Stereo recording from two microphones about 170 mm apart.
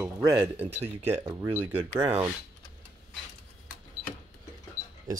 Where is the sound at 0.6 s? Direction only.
10° right (ahead or behind).